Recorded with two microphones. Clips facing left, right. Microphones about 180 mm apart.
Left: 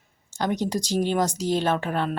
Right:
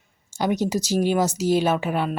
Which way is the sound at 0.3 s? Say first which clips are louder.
Right 3 dB; 10° right (ahead or behind).